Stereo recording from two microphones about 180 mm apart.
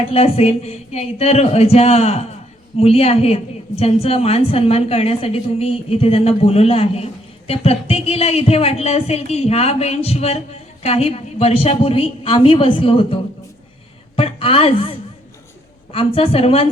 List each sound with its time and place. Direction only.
0.1 s a woman's voice: 35° left (ahead or behind)
14.2 s a woman's voice: 30° left (ahead or behind)